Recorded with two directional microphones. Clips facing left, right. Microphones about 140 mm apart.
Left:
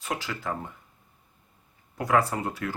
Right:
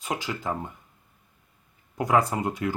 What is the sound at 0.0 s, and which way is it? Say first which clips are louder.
Speech: right 2 dB; 20° right (ahead or behind).